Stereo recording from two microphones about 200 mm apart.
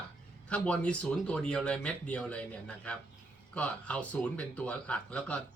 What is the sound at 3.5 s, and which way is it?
Speech, 5° left (ahead or behind).